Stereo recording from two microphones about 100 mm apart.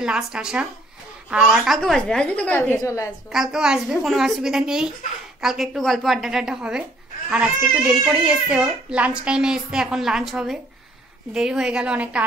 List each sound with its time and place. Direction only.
0.0 s a child's voice: 10° right (ahead or behind); by 2.8 s 20° left (ahead or behind)
2.8 s a woman's voice: 30° left (ahead or behind)
3.3 s a woman's voice: 5° right (ahead or behind)